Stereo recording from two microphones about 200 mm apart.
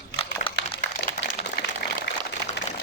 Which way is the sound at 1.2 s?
55° left (ahead or behind).